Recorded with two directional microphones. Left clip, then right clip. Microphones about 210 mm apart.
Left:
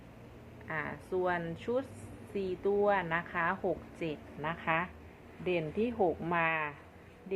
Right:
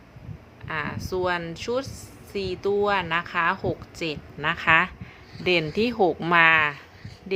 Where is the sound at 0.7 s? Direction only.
25° right (ahead or behind).